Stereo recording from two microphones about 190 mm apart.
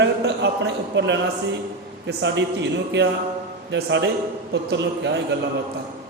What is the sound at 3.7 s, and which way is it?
A man's voice, 65° right (ahead or behind).